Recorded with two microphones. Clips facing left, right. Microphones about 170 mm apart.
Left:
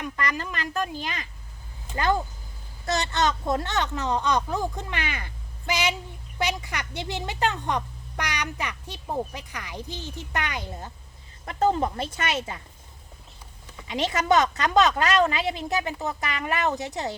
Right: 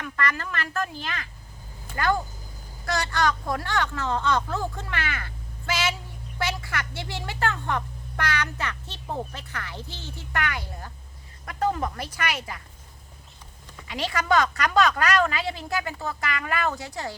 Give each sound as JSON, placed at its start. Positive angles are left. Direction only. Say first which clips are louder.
{"t": 0.0, "sound": "a child's voice", "louder": "even", "side_deg": 15}
{"t": 13.8, "sound": "a woman's voice", "louder": "left 3 dB", "side_deg": 20}